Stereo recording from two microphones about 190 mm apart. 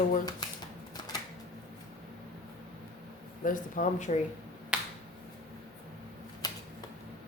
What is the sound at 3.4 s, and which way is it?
Speech, 45° left (ahead or behind).